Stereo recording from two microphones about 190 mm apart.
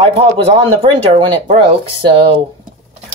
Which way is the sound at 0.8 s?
30° right (ahead or behind).